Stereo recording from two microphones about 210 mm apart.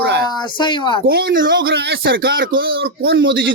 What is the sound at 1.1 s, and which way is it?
Speech, 45° right (ahead or behind).